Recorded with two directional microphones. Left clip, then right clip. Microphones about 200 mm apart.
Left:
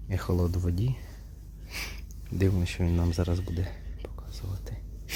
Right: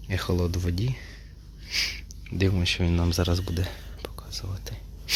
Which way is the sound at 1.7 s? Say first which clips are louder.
Right 10 dB; 25° left (ahead or behind).